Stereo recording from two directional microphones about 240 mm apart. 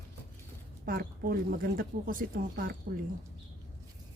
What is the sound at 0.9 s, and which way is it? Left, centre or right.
Speech, right.